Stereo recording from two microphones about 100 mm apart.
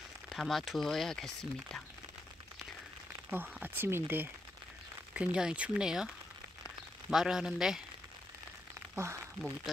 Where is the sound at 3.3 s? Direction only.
20° right (ahead or behind).